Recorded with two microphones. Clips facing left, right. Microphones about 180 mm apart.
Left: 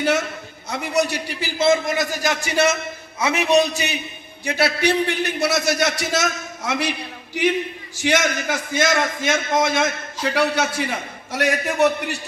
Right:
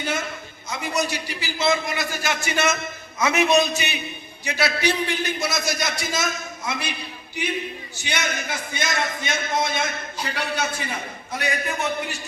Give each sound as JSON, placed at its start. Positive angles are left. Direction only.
{"t": 0.0, "sound": "a sound", "side_deg": 80}
{"t": 0.7, "sound": "a man's voice", "side_deg": 60}
{"t": 4.4, "sound": "a man's voice", "side_deg": 55}